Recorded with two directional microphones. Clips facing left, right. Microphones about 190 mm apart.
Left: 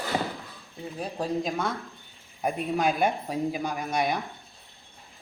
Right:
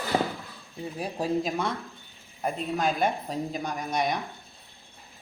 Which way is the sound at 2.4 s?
10° left (ahead or behind).